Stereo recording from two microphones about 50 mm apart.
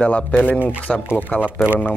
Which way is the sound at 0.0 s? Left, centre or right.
Left.